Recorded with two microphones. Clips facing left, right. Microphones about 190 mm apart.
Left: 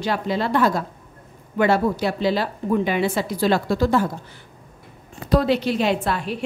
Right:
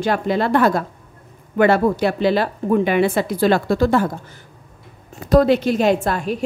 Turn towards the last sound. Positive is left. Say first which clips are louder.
# right 4 dB
turn(degrees=-45)  # may be behind; listen again after turning